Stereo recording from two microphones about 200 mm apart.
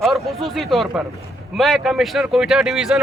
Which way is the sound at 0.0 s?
Centre (ahead or behind).